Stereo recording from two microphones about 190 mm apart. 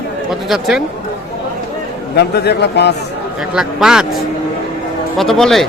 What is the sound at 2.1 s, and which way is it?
Speech, 60° left (ahead or behind).